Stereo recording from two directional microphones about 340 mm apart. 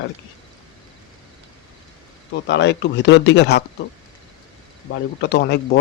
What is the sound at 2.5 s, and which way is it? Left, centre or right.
Speech, left.